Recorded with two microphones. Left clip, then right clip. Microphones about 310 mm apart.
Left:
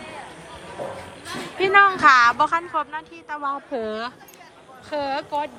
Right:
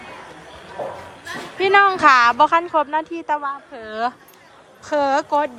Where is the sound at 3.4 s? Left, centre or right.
Centre.